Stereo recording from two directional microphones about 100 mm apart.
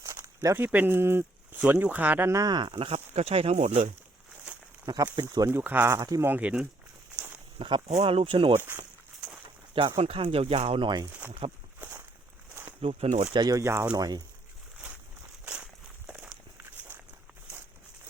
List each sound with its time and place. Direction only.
0.0 s a sound: 30° right (ahead or behind)
0.6 s speech: 20° right (ahead or behind)
2.5 s speech: 50° right (ahead or behind); by 3.8 s 90° right
4.9 s speech: 35° right (ahead or behind)
5.5 s speech: 20° right (ahead or behind)
6.3 s speech: 15° right (ahead or behind)
7.6 s speech: 60° right (ahead or behind)
9.7 s speech: 60° right (ahead or behind)
11.0 s speech: 20° right (ahead or behind)
11.8 s walk: 20° right (ahead or behind)
12.6 s speech: 80° right
13.3 s speech: 40° right (ahead or behind)
15.4 s walk: 10° right (ahead or behind)